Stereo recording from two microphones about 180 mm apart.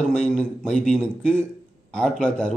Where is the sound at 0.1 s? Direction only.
5° left (ahead or behind).